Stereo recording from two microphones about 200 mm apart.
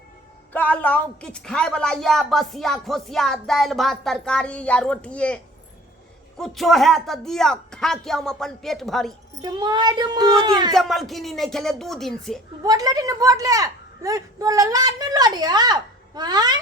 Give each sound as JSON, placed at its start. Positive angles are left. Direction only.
{"t": 0.5, "sound": "a woman's voice", "side_deg": 5}
{"t": 9.4, "sound": "a woman's voice", "side_deg": -20}
{"t": 10.8, "sound": "a woman's voice", "side_deg": 0}
{"t": 12.6, "sound": "a woman's voice", "side_deg": -20}